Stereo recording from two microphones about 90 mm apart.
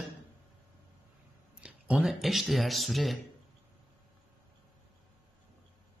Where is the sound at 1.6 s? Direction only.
10° right (ahead or behind).